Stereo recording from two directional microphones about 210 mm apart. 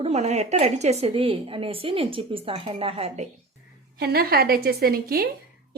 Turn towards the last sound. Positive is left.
turn(degrees=-45)  # may be behind; listen again after turning